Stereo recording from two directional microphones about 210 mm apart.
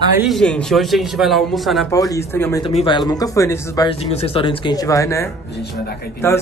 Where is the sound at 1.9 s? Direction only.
15° left (ahead or behind).